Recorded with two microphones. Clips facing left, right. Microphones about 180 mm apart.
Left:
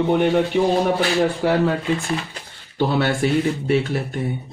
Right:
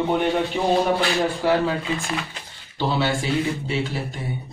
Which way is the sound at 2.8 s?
55° left (ahead or behind).